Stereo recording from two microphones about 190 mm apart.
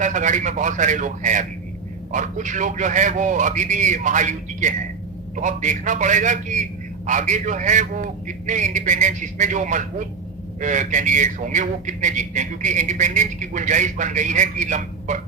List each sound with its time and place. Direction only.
0.0 s a man's voice: 40° right (ahead or behind)